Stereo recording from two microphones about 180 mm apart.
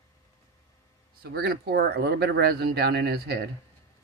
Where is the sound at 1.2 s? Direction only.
60° right (ahead or behind).